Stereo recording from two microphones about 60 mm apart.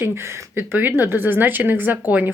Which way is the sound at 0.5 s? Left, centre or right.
Right.